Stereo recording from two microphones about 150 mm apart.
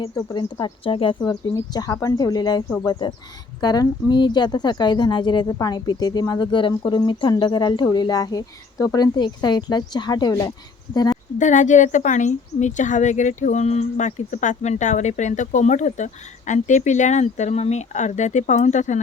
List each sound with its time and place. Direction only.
0.6 s a woman's voice: 35° left (ahead or behind)
11.3 s a woman's voice: 55° left (ahead or behind)